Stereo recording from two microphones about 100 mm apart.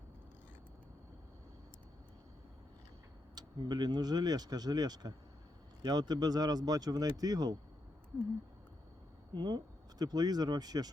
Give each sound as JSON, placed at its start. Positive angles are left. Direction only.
{"t": 3.3, "sound": "speech", "side_deg": -45}
{"t": 9.3, "sound": "speech", "side_deg": -45}